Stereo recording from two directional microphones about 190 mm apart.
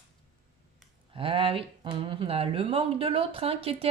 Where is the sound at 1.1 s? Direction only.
30° right (ahead or behind).